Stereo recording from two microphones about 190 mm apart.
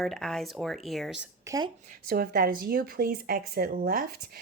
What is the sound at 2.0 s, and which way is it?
Speech, 50° right (ahead or behind).